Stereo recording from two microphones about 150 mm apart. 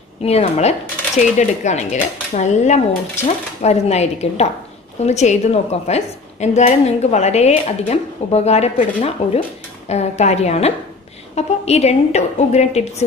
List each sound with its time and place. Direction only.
0.2 s a woman's voice: 45° left (ahead or behind)